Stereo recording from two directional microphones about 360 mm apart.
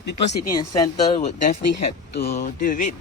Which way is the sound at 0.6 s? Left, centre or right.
Centre.